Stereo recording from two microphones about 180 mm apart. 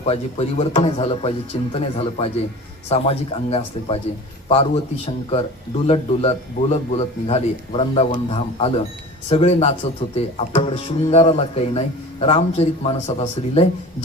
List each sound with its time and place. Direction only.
0.0 s a man's voice: 35° left (ahead or behind)